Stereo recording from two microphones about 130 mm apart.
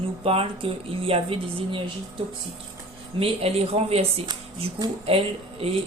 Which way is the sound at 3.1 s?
50° right (ahead or behind).